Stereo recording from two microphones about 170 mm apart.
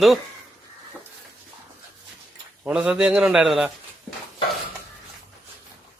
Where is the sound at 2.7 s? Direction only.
5° right (ahead or behind).